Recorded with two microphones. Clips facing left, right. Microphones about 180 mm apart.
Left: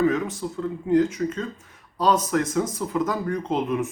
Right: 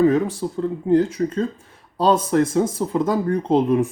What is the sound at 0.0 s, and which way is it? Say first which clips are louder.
Speech: right 5 dB; 35° right (ahead or behind).